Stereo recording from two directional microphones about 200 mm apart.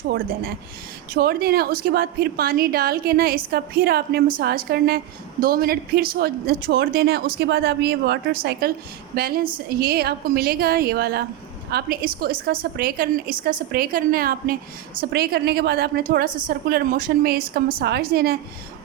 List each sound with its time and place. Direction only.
1.1 s a woman's voice: 50° right (ahead or behind)